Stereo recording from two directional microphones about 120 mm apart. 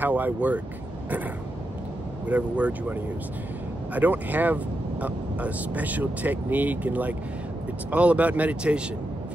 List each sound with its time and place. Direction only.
0.0 s speech: 15° right (ahead or behind)
2.2 s speech: 10° right (ahead or behind)